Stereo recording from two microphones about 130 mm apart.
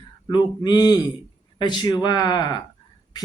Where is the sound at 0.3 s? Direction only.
35° left (ahead or behind).